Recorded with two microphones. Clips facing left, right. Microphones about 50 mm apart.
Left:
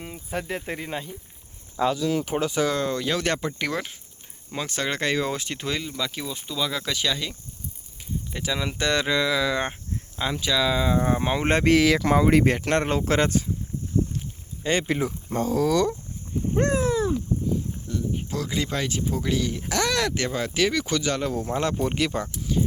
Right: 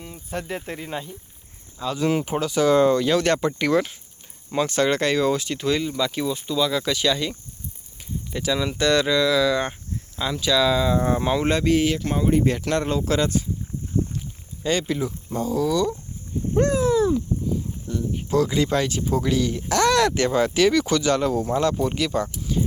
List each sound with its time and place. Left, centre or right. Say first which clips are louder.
0.3 s speech: even; centre
2.3 s speech: right 5 dB; centre
5.4 s speech: right 4 dB; left
5.6 s speech: right 7 dB; centre
8.3 s speech: right 5 dB; centre
11.6 s speech: left 2 dB; left
12.5 s speech: even; left
14.6 s speech: right 1 dB; left
16.6 s a sound: right 4 dB; left
17.8 s speech: right 1 dB; centre
21.5 s speech: right 3 dB; left
22.5 s a sound: even; centre